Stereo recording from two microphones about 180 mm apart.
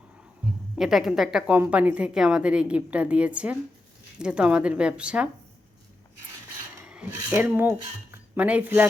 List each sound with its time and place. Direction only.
0.8 s a woman's voice: centre (ahead or behind)
6.8 s speech: 10° right (ahead or behind)